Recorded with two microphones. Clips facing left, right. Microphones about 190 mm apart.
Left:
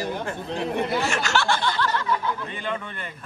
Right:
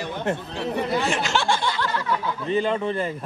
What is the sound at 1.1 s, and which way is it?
Speech, 15° right (ahead or behind).